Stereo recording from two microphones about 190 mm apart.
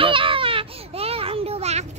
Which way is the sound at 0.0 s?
25° right (ahead or behind).